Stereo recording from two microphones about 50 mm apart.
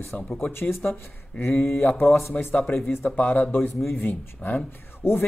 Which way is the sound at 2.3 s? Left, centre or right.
Left.